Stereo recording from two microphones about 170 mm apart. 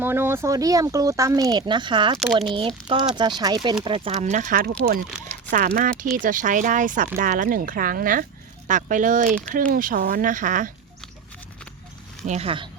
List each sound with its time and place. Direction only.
0.0 s speech: 15° right (ahead or behind); by 10.7 s 50° right (ahead or behind)
12.2 s speech: 40° right (ahead or behind)